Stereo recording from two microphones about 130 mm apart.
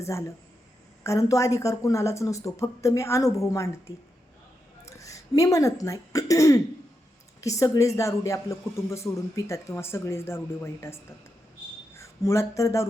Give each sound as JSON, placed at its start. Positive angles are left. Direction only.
{"t": 0.0, "sound": "speech", "side_deg": 20}